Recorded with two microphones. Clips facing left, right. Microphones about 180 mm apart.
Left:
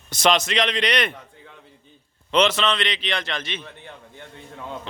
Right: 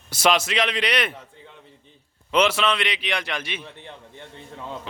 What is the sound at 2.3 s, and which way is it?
A man's voice, 10° right (ahead or behind).